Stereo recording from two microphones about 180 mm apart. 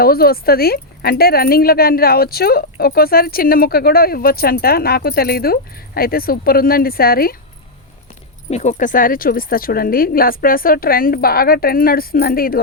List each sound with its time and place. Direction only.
0.0 s speech: 55° left (ahead or behind)
8.4 s speech: 40° left (ahead or behind); by 12.6 s 55° left (ahead or behind)